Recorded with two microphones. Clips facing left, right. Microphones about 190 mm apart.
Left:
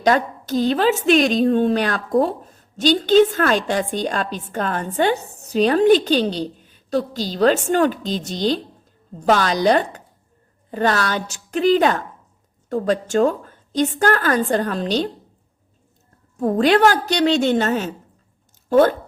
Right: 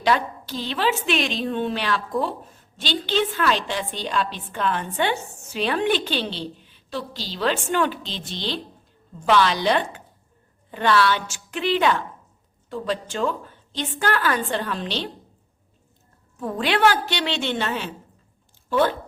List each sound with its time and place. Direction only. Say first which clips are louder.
0.0 s a woman's voice: left 4 dB; 45° left (ahead or behind)
16.4 s a woman's voice: left 6 dB; 40° left (ahead or behind)